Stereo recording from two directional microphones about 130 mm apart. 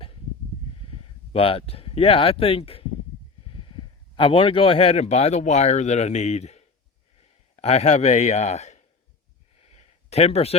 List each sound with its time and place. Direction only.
1.3 s speech: 45° left (ahead or behind)
4.1 s speech: 45° left (ahead or behind); by 8.8 s 60° left (ahead or behind)
9.6 s a sound: 55° left (ahead or behind)